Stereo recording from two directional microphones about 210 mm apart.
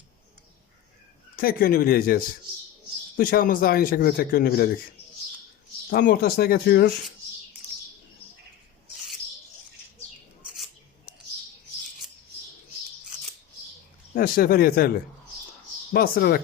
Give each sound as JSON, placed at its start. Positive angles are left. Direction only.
{"t": 1.4, "sound": "speech", "side_deg": 45}
{"t": 5.9, "sound": "speech", "side_deg": 45}
{"t": 14.1, "sound": "speech", "side_deg": 45}